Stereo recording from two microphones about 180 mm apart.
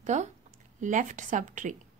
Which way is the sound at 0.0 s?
40° right (ahead or behind).